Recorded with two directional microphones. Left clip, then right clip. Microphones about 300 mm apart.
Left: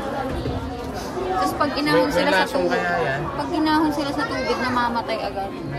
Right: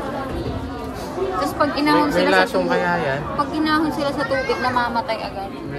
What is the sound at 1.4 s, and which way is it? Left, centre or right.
Speech, centre.